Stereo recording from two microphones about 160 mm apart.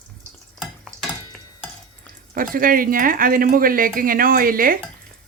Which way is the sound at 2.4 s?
60° right (ahead or behind).